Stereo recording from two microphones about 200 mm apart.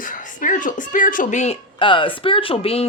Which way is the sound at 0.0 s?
40° left (ahead or behind).